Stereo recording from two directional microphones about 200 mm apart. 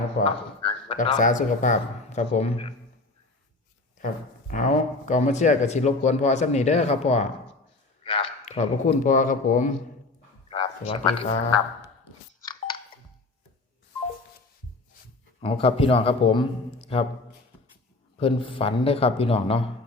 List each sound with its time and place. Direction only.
0.2 s a sound: 30° left (ahead or behind)
1.0 s speech: 40° left (ahead or behind)
3.9 s a man's voice: 40° left (ahead or behind)
10.5 s speech: 30° left (ahead or behind)
15.4 s a man's voice: 30° left (ahead or behind)
18.2 s a man's voice: 25° left (ahead or behind)